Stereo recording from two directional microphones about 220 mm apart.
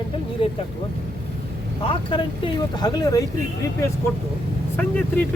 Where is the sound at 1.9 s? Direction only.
20° left (ahead or behind).